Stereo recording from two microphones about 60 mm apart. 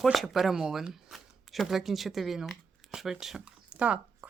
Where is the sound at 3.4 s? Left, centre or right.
Centre.